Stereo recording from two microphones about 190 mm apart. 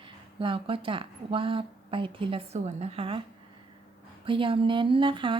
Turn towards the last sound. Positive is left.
turn(degrees=-25)  # may be behind; listen again after turning